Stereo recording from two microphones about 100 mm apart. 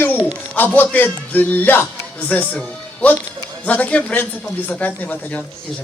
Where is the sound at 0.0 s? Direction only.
20° left (ahead or behind).